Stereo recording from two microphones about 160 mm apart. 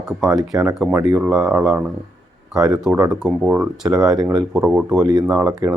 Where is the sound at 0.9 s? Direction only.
25° right (ahead or behind).